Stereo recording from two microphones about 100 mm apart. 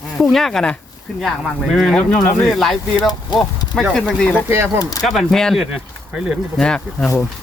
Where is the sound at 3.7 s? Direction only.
5° left (ahead or behind).